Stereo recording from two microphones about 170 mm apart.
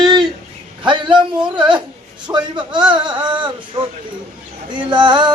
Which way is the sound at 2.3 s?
25° right (ahead or behind).